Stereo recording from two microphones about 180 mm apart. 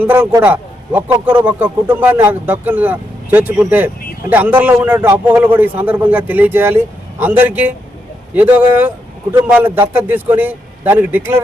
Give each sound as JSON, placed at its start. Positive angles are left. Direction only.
{"t": 0.0, "sound": "a man's voice", "side_deg": -10}